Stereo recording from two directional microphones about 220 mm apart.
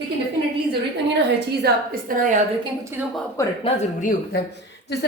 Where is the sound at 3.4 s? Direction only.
15° left (ahead or behind).